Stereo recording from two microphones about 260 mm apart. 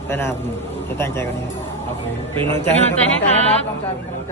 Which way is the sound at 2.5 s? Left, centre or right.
Centre.